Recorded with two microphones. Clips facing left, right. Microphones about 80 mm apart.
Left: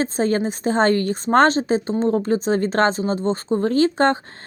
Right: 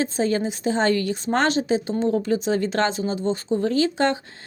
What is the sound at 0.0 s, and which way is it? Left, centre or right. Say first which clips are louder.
A woman's voice: left 2 dB; left.